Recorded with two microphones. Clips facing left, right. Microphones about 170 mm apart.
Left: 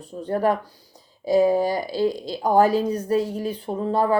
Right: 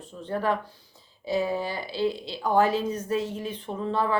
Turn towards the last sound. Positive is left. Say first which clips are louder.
# left 5 dB
turn(degrees=40)  # may be behind; listen again after turning